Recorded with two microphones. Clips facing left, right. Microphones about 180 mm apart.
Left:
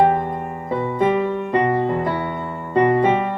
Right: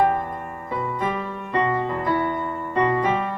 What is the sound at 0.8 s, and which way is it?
Music, 25° left (ahead or behind).